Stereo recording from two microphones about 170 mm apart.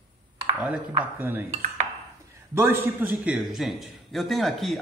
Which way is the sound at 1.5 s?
40° right (ahead or behind).